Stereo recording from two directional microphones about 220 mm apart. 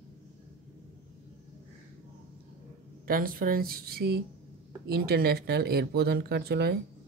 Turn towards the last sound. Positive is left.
turn(degrees=-45)  # may be behind; listen again after turning